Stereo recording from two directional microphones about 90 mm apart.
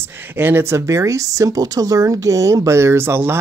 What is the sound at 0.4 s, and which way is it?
Speech, 25° right (ahead or behind).